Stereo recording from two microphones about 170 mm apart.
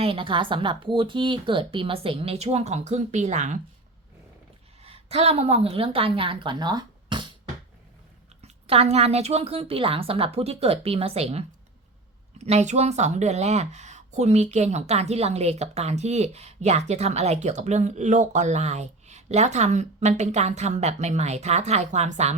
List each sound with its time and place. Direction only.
0.0 s speech: 30° right (ahead or behind)
4.8 s a woman's voice: 35° right (ahead or behind)
8.4 s speech: 35° right (ahead or behind)
12.5 s speech: 40° right (ahead or behind)